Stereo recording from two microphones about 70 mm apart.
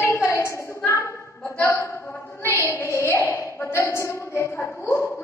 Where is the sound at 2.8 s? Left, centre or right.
Left.